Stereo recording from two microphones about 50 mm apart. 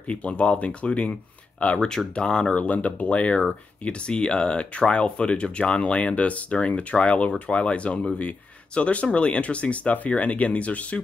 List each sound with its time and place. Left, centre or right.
0.1 s speech: left
1.9 s speech: centre